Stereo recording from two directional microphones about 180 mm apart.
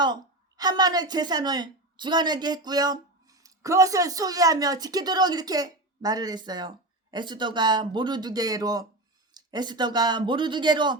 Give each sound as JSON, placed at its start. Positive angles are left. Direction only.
{"t": 0.0, "sound": "a woman's voice", "side_deg": -25}